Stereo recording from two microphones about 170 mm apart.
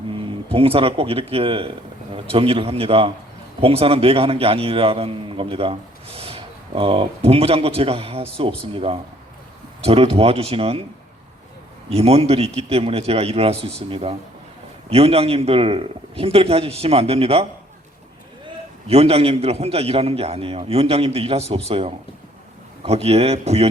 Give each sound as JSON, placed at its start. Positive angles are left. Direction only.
{"t": 0.1, "sound": "a man's voice", "side_deg": -30}
{"t": 11.9, "sound": "a man's voice", "side_deg": -35}
{"t": 18.9, "sound": "a man's voice", "side_deg": -35}